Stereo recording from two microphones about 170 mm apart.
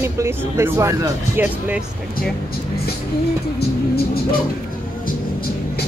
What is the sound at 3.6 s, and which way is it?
Vehicle, 65° left (ahead or behind).